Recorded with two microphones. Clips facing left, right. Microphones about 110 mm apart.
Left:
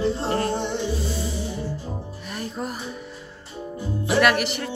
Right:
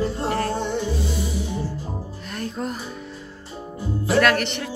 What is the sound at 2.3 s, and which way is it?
Speech, 5° left (ahead or behind).